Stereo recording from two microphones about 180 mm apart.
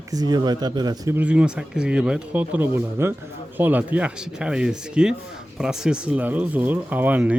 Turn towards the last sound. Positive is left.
turn(degrees=-10)  # may be behind; listen again after turning